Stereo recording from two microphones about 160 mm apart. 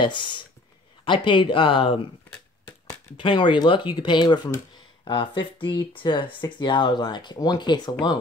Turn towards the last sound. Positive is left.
turn(degrees=25)  # may be behind; listen again after turning